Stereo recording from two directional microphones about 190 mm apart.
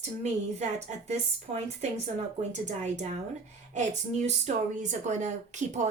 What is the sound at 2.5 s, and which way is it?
A woman's voice, 40° right (ahead or behind).